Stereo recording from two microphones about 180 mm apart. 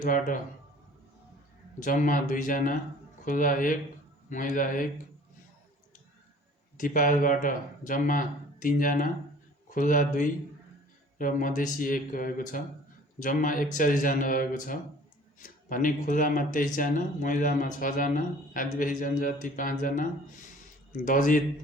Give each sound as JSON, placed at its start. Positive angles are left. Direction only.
{"t": 0.0, "sound": "speech", "side_deg": 45}
{"t": 1.8, "sound": "speech", "side_deg": 45}
{"t": 6.7, "sound": "speech", "side_deg": 50}